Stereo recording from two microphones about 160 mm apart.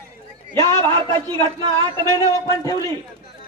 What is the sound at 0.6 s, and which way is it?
Speech, 20° left (ahead or behind).